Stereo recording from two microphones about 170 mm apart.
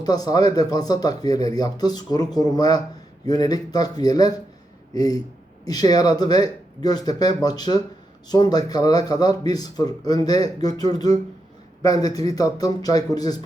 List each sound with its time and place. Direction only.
0.0 s speech: 20° left (ahead or behind)